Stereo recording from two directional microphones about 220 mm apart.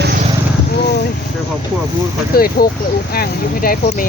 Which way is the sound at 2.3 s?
40° left (ahead or behind).